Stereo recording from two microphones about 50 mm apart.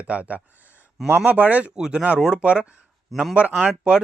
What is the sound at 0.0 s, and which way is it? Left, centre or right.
Speech, right.